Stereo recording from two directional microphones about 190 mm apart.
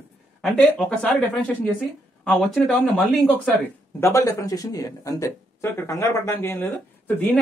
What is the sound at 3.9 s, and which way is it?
Speech, 15° left (ahead or behind).